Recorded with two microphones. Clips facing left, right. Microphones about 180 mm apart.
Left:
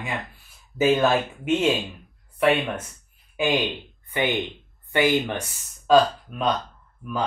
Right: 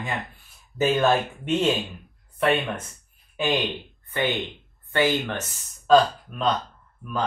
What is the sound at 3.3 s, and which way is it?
Speech, 10° left (ahead or behind).